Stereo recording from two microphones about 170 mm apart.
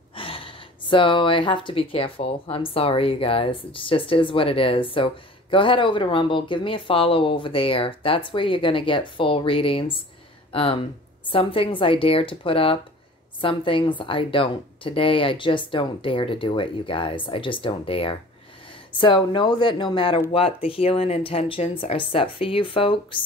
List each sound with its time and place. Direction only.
0.1 s speech: 30° left (ahead or behind)